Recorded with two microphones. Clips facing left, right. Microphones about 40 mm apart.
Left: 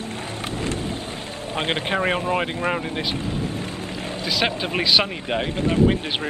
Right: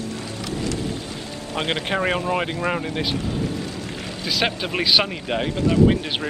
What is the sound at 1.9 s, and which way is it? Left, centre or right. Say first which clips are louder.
Speech: even; centre.